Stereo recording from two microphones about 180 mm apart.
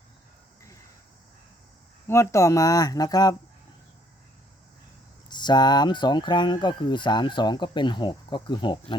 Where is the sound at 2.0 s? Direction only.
15° left (ahead or behind).